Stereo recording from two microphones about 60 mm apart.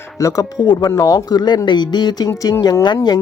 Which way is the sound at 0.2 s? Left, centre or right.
Left.